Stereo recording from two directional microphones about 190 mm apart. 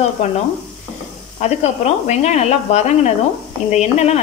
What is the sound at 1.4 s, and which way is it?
Speech, 35° left (ahead or behind).